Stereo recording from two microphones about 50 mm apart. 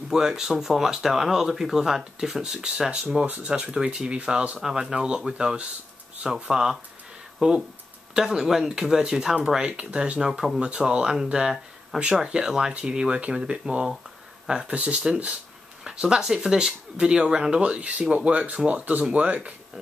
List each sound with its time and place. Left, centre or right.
0.1 s speech: centre
4.6 s speech: centre; by 19.5 s right